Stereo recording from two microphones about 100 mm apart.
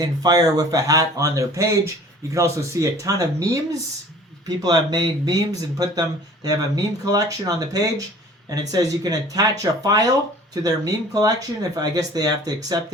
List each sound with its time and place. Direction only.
0.0 s speech: 40° right (ahead or behind)